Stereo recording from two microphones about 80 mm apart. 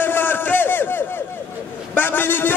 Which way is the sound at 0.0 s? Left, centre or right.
Left.